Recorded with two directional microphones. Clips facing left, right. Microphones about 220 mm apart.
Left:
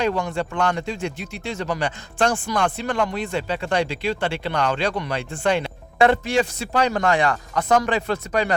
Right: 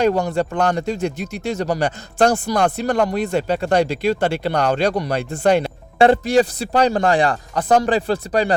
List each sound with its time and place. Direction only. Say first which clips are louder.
0.0 s speech: right 5 dB; 40° right (ahead or behind)